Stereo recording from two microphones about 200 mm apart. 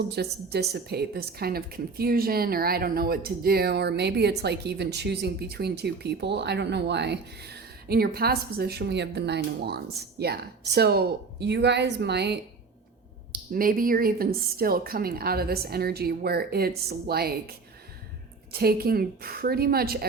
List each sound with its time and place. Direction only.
0.1 s a woman's voice: 55° right (ahead or behind)
13.3 s a woman's voice: 45° right (ahead or behind)
18.5 s a woman's voice: 50° right (ahead or behind)